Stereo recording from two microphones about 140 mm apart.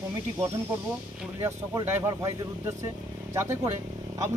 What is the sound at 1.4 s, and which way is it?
Speech, 20° right (ahead or behind).